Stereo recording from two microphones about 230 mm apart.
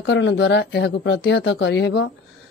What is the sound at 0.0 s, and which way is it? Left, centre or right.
A woman's voice, left.